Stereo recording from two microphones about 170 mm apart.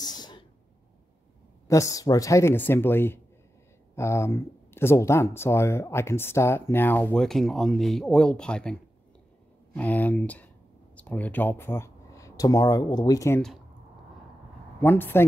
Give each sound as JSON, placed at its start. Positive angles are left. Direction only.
{"t": 0.0, "sound": "a sound", "side_deg": 25}
{"t": 1.7, "sound": "speech", "side_deg": 20}
{"t": 9.8, "sound": "speech", "side_deg": 10}
{"t": 14.8, "sound": "speech", "side_deg": 10}